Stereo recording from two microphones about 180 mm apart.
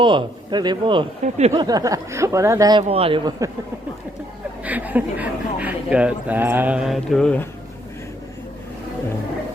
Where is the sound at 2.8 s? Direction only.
35° right (ahead or behind).